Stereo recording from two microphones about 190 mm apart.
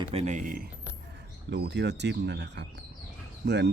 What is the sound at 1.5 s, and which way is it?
Speech, 65° right (ahead or behind).